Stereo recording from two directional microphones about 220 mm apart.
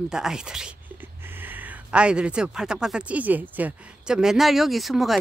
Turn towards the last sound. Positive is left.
turn(degrees=0)  # may be behind; listen again after turning